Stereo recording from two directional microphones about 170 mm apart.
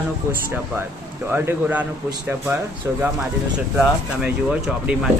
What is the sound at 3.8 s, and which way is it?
Speech, 5° right (ahead or behind).